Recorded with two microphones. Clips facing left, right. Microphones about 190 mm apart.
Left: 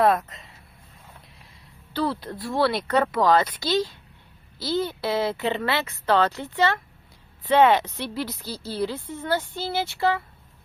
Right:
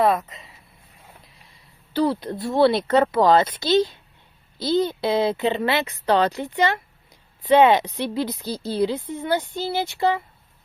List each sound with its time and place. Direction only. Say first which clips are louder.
0.0 s speech: right 1 dB; centre (ahead or behind)
1.9 s a woman's voice: right 5 dB; 15° right (ahead or behind)